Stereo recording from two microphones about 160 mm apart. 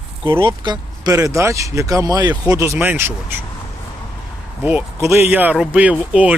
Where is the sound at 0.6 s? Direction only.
20° right (ahead or behind).